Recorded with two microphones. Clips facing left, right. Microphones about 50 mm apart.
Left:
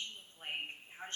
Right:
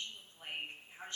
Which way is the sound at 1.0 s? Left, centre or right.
Left.